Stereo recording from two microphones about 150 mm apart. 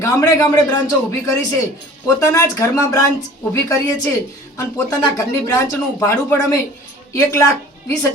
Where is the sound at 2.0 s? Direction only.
20° left (ahead or behind).